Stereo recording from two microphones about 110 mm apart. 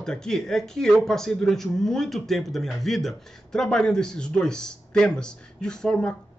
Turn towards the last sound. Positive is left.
turn(degrees=5)  # may be behind; listen again after turning